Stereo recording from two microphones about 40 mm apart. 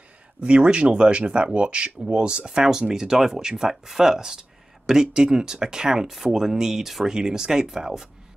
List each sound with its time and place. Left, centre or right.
0.4 s speech: right